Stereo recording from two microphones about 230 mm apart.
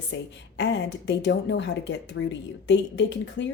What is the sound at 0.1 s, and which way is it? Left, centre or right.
A woman's voice, left.